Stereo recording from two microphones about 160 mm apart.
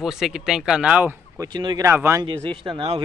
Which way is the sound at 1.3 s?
25° right (ahead or behind).